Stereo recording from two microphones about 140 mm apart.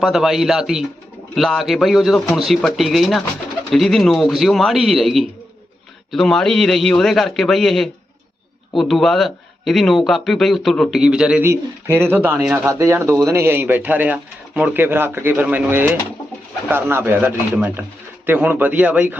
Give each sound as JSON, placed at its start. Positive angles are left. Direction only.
{"t": 0.0, "sound": "a man's voice", "side_deg": 0}
{"t": 11.4, "sound": "speech", "side_deg": -15}